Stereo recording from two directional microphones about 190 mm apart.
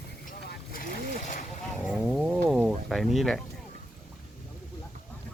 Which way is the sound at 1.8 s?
5° right (ahead or behind).